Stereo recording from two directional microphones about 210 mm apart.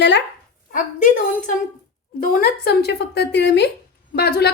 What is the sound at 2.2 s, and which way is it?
A woman's voice, 45° left (ahead or behind).